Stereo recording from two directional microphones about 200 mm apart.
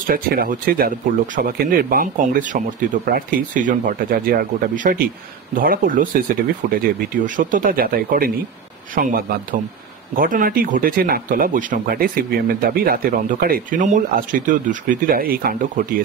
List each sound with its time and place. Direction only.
0.0 s speech: 45° right (ahead or behind)